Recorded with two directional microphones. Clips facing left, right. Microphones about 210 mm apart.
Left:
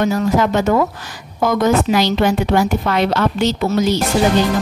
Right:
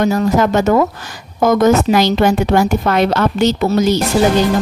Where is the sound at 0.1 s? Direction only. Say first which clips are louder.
Right 2 dB; 45° right (ahead or behind).